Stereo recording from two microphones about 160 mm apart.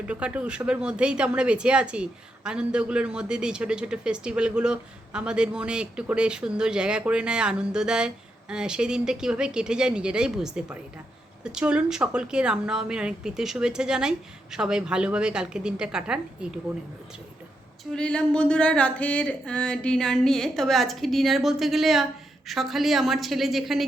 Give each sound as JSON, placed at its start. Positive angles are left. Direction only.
{"t": 0.1, "sound": "speech", "side_deg": -5}
{"t": 17.9, "sound": "speech", "side_deg": 5}